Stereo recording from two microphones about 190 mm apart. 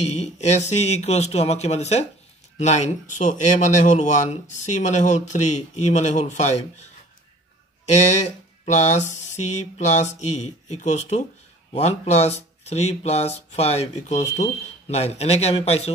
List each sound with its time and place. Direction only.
0.0 s speech: 35° left (ahead or behind)